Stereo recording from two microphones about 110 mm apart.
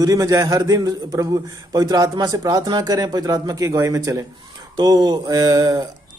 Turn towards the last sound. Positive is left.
turn(degrees=-35)  # may be behind; listen again after turning